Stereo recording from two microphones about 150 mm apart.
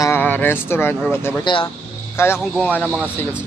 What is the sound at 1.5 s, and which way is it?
Speech, 30° left (ahead or behind).